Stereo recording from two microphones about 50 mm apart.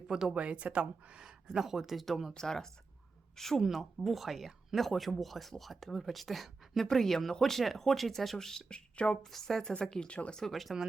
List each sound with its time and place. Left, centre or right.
0.1 s speech: centre
0.3 s speech: right; by 2.3 s centre
2.3 s speech: centre
3.6 s speech: centre; by 10.4 s left
10.4 s speech: centre